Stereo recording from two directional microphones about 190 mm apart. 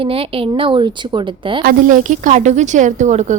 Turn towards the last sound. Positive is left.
turn(degrees=-40)  # may be behind; listen again after turning